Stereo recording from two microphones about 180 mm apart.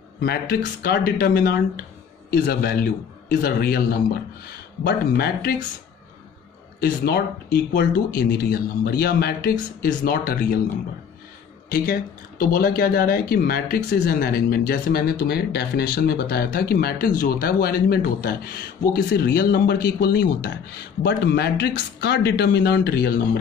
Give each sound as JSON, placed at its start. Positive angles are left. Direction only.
{"t": 0.2, "sound": "speech", "side_deg": 60}
{"t": 6.8, "sound": "speech", "side_deg": 60}
{"t": 11.7, "sound": "speech", "side_deg": 50}